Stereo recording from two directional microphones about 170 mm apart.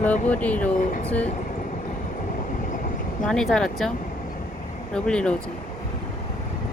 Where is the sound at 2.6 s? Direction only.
50° left (ahead or behind).